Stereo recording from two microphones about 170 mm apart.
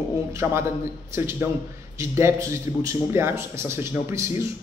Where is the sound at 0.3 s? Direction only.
15° right (ahead or behind).